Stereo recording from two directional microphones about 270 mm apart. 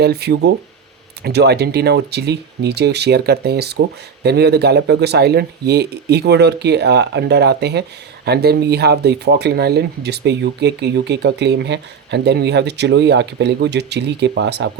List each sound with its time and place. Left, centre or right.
0.0 s speech: right